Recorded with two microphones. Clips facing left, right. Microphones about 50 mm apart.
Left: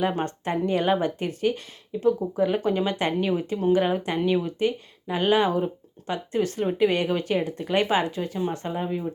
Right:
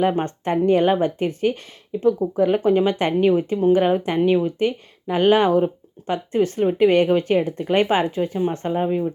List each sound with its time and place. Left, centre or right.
0.0 s speech: right